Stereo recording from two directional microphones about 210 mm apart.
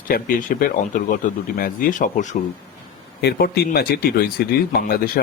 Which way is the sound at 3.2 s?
50° left (ahead or behind).